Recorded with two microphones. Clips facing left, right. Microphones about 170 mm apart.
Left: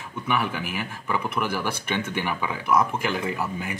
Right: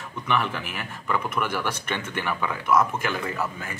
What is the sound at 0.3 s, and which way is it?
Speech, 10° left (ahead or behind).